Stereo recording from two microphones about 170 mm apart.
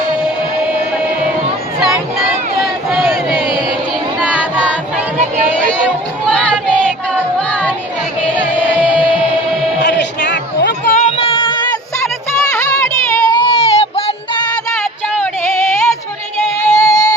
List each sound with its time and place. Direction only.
2.9 s crowd: 5° right (ahead or behind)
6.3 s music: 5° left (ahead or behind)
9.8 s a sound: 80° left
11.2 s child singing: 30° left (ahead or behind)
12.5 s music: 15° left (ahead or behind); by 14.4 s 35° left (ahead or behind)
16.6 s music: 15° left (ahead or behind)